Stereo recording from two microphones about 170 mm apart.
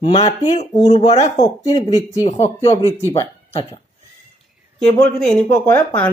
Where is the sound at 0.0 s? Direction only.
30° left (ahead or behind).